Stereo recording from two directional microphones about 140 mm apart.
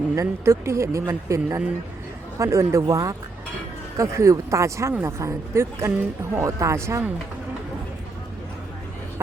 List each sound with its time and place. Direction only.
0.2 s speech: 20° right (ahead or behind)